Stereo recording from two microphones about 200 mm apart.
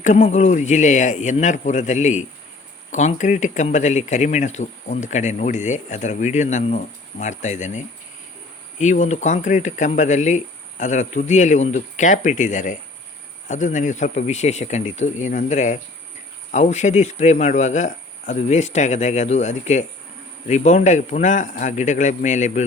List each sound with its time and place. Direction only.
0.0 s speech: 35° left (ahead or behind)